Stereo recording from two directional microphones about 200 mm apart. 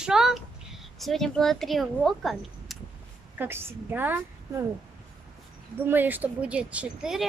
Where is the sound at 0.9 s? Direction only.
Centre (ahead or behind).